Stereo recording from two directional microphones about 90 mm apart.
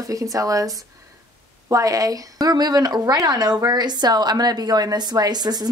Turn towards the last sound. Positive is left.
turn(degrees=-50)  # may be behind; listen again after turning